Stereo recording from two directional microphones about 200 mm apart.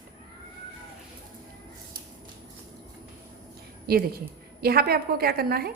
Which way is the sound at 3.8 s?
50° right (ahead or behind).